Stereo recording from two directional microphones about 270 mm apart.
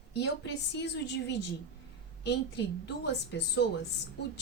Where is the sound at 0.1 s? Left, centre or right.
Left.